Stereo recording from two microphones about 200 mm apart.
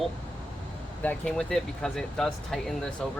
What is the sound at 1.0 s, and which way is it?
Speech, 5° left (ahead or behind).